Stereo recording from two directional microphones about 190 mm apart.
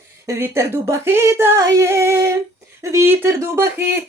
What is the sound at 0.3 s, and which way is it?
Speech, 15° right (ahead or behind).